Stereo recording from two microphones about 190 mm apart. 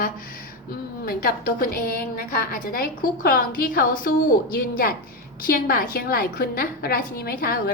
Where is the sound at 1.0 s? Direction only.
50° left (ahead or behind).